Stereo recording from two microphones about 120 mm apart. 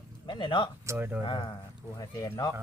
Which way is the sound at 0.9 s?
20° right (ahead or behind).